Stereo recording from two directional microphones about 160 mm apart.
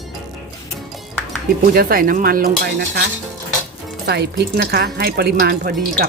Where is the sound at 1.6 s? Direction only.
70° right (ahead or behind).